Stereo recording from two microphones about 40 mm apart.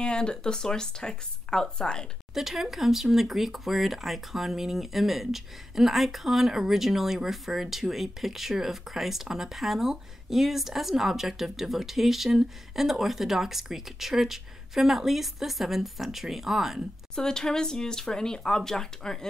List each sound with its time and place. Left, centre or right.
0.0 s speech: left
2.3 s speech: centre
17.1 s speech: centre